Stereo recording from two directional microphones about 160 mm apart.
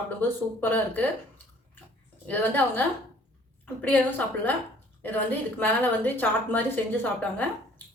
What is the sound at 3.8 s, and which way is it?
Speech, 10° left (ahead or behind).